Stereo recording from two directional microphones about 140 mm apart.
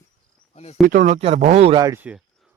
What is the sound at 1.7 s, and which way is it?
Speech, 25° right (ahead or behind).